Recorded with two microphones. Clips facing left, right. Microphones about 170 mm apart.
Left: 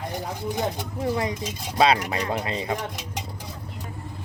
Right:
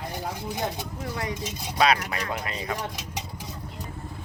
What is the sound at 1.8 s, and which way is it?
Speech, 25° left (ahead or behind).